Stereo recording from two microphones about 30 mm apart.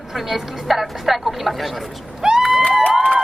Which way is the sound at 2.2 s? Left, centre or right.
Right.